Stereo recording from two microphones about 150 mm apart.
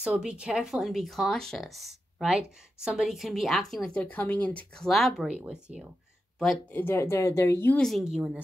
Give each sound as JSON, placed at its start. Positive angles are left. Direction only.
{"t": 0.0, "sound": "speech", "side_deg": -5}
{"t": 6.7, "sound": "speech", "side_deg": 15}
{"t": 7.8, "sound": "speech", "side_deg": 0}